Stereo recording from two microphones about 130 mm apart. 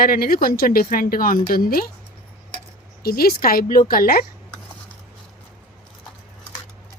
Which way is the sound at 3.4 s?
90° left.